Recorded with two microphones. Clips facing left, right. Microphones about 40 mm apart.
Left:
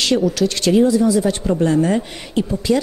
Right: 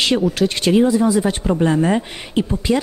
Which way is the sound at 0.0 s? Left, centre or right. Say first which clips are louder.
Even; right.